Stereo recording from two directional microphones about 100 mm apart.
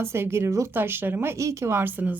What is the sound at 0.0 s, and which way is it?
Speech, 25° right (ahead or behind).